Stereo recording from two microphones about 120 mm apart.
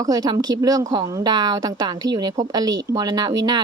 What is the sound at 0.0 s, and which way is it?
Speech, 35° right (ahead or behind).